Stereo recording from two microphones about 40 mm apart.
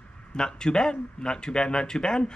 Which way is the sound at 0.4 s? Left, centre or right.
Centre.